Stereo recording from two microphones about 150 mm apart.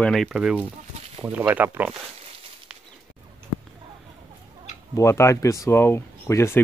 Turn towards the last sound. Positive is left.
turn(degrees=15)  # may be behind; listen again after turning